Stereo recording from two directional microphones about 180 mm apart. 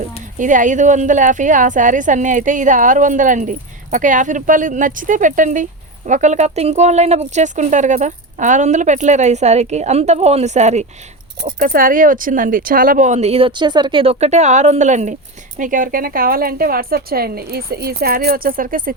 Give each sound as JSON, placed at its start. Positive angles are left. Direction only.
{"t": 0.3, "sound": "a woman's voice", "side_deg": -45}
{"t": 11.6, "sound": "speech", "side_deg": -50}